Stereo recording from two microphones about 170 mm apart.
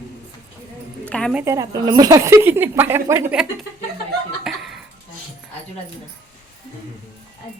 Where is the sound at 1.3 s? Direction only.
15° right (ahead or behind).